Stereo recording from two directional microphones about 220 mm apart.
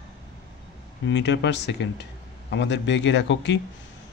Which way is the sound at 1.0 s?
55° left (ahead or behind).